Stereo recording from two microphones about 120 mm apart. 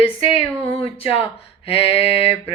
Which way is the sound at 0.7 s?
50° left (ahead or behind).